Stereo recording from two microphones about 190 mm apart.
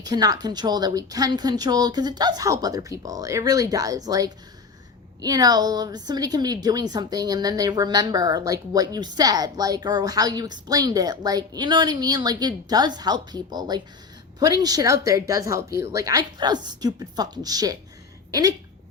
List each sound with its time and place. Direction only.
0.0 s a woman's voice: 20° right (ahead or behind)